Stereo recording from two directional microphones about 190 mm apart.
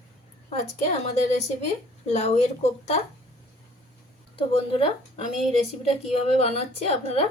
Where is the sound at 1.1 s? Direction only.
35° left (ahead or behind).